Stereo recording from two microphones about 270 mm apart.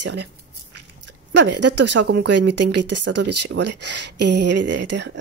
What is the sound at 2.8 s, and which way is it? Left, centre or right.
Speech, right.